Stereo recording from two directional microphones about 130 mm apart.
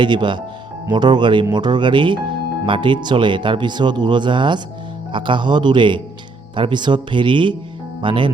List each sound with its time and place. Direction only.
0.0 s speech: 35° right (ahead or behind)